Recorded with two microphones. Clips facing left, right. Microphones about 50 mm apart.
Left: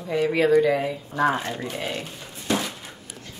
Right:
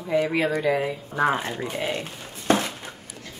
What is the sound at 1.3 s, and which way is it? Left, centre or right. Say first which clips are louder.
Speech: even; centre.